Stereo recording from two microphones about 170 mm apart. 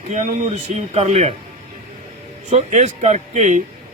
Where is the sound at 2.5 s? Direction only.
40° right (ahead or behind).